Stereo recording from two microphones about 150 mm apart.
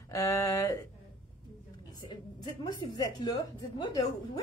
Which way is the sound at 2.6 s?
25° left (ahead or behind).